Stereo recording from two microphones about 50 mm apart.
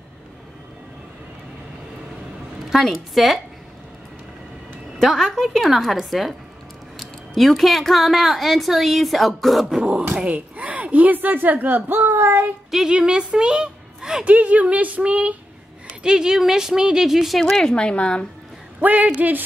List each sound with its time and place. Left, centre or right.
2.7 s speech: centre
4.9 s speech: centre
9.8 s a woman's voice: centre
10.1 s speech: right
12.0 s child singing: right
12.7 s a woman's voice: centre
14.2 s speech: right
16.0 s a woman's voice: centre
17.4 s a woman's voice: centre
18.8 s speech: right